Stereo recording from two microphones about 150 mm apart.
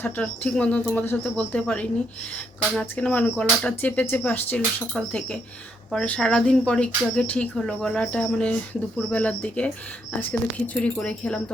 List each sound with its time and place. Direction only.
0.0 s speech: 5° left (ahead or behind)